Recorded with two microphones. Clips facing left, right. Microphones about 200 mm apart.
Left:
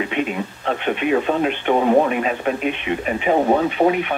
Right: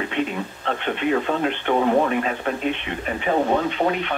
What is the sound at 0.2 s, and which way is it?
Speech, 15° left (ahead or behind).